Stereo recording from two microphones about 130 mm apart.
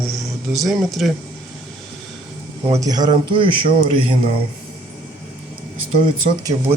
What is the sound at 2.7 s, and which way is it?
A man's voice, 30° right (ahead or behind).